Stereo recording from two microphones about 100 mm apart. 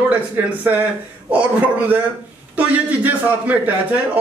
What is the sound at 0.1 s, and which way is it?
A man's voice, 15° right (ahead or behind).